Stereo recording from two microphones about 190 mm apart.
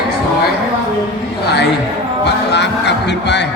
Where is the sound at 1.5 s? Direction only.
60° left (ahead or behind).